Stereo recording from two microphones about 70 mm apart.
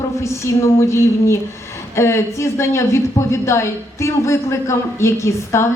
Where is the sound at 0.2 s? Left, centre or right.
Left.